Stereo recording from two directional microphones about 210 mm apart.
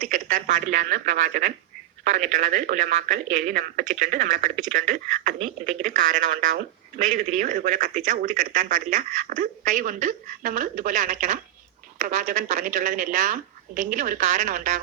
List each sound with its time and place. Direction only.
0.0 s speech: 40° right (ahead or behind)